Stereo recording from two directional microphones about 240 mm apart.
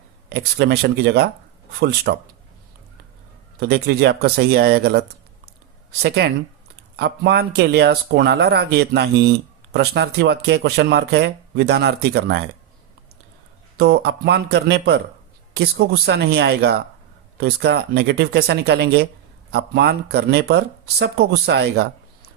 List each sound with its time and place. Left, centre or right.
0.3 s speech: right
3.6 s speech: right
13.7 s speech: right